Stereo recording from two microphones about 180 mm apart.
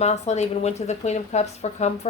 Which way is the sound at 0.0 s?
40° left (ahead or behind).